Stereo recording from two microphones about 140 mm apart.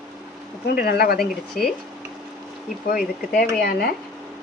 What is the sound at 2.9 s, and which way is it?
Speech, 90° left.